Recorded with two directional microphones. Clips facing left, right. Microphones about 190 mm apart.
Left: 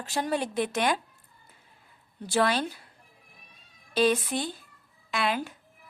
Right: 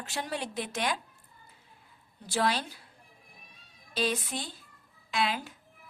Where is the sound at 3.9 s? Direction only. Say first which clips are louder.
Left 7 dB; 60° left (ahead or behind).